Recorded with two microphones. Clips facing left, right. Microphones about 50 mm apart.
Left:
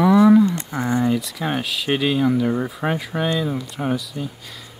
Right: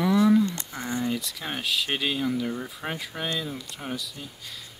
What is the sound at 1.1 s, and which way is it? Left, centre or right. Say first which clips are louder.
Speech: left 9 dB; centre.